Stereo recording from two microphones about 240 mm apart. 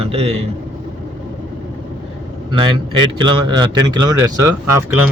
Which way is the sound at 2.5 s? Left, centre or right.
Centre.